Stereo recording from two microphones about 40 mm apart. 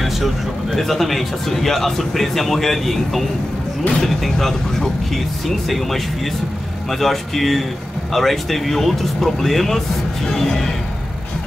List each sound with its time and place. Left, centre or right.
0.0 s speech: centre